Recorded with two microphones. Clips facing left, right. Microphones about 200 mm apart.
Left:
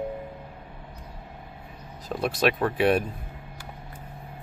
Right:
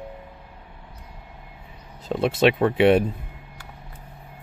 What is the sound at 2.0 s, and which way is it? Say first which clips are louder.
Speech: right 5 dB; 25° right (ahead or behind).